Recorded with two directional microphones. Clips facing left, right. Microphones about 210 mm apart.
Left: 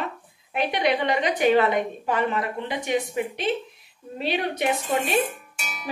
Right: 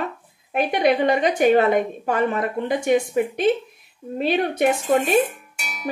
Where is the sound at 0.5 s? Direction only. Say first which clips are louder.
Right 4 dB; 45° right (ahead or behind).